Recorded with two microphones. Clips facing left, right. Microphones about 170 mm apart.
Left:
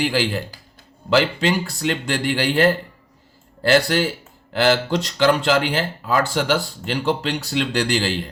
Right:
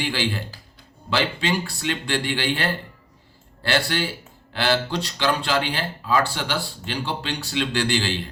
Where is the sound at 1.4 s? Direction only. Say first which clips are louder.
Left 4 dB; 45° left (ahead or behind).